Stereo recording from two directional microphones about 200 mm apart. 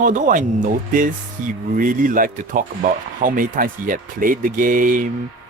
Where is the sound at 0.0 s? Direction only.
40° right (ahead or behind).